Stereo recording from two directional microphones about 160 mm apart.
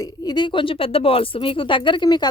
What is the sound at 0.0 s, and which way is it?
A woman's voice, 30° left (ahead or behind).